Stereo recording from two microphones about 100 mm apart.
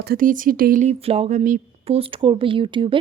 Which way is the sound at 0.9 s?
80° right.